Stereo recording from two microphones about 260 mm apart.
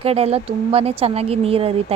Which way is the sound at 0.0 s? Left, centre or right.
Right.